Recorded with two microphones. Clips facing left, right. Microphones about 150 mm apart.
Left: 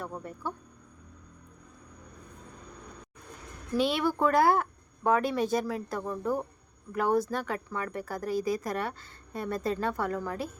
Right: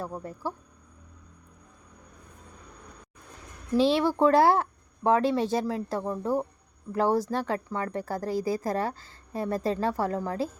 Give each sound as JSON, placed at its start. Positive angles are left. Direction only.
{"t": 0.2, "sound": "speech", "side_deg": -35}
{"t": 3.8, "sound": "speech", "side_deg": -30}